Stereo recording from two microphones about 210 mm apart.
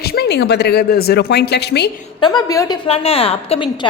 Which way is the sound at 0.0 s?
50° left (ahead or behind).